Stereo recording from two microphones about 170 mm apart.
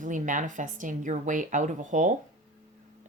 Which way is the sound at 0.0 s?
50° right (ahead or behind).